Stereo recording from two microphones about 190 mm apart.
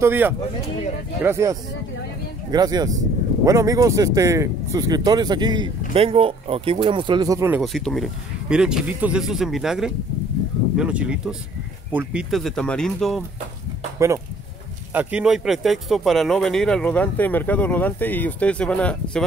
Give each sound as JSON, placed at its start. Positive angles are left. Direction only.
{"t": 0.0, "sound": "speech", "side_deg": -10}
{"t": 7.6, "sound": "speech", "side_deg": 0}
{"t": 13.9, "sound": "speech", "side_deg": -15}